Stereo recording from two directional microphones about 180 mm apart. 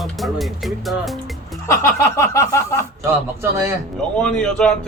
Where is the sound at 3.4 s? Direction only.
15° right (ahead or behind).